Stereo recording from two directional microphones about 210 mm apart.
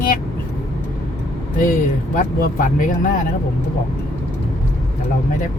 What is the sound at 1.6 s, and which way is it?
Speech, 40° left (ahead or behind).